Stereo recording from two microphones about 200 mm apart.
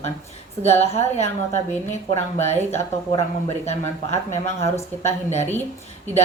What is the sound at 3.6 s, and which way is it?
Speech, 35° left (ahead or behind).